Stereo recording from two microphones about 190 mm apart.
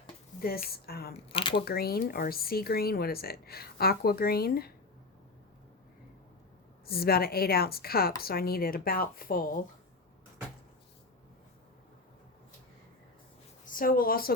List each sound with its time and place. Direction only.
0.3 s a woman's voice: 50° left (ahead or behind)
1.1 s speech: 25° left (ahead or behind)
1.6 s speech: 55° left (ahead or behind)
6.8 s speech: 55° left (ahead or behind)
13.7 s speech: 45° left (ahead or behind)